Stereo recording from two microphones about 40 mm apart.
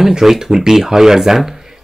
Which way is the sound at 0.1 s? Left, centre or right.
Centre.